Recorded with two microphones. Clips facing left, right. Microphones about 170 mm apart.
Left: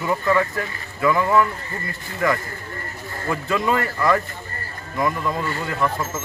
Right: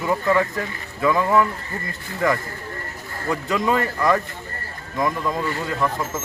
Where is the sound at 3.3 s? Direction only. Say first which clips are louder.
Even; 20° right (ahead or behind).